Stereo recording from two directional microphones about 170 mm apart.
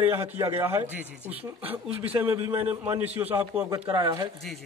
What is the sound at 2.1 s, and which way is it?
A man's voice, 15° right (ahead or behind).